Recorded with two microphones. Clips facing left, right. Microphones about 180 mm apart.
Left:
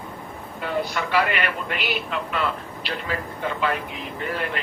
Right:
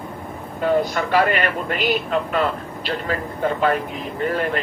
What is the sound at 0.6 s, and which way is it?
A man's voice, 45° right (ahead or behind).